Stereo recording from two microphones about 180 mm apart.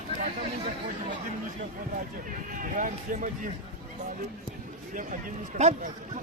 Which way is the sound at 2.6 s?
50° right (ahead or behind).